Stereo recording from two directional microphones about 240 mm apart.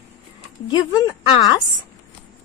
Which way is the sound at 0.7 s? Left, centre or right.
Centre.